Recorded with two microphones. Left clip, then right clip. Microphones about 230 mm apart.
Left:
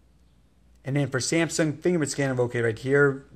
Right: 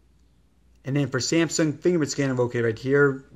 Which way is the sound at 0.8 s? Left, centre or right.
Centre.